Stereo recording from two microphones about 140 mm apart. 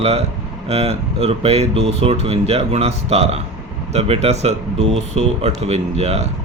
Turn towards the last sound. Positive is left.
turn(degrees=-50)  # may be behind; listen again after turning